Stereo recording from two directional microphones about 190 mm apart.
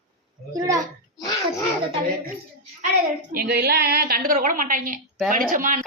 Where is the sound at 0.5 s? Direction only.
20° right (ahead or behind).